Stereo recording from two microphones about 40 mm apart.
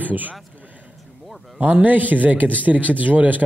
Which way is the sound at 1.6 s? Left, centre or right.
Right.